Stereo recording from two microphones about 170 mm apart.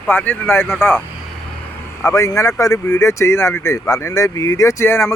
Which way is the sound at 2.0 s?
15° left (ahead or behind).